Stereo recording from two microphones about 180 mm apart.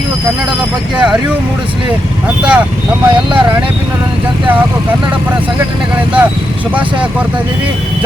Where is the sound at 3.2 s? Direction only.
25° right (ahead or behind).